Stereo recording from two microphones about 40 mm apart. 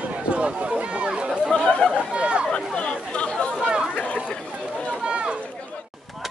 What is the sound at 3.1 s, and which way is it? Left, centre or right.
Chatter, left.